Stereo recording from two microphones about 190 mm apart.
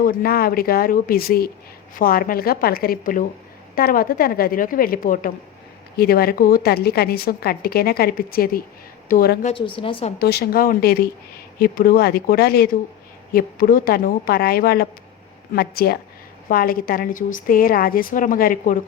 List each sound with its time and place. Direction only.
0.0 s a woman's voice: 50° left (ahead or behind)
9.5 s speech: 25° left (ahead or behind)
10.2 s a woman's voice: 55° left (ahead or behind)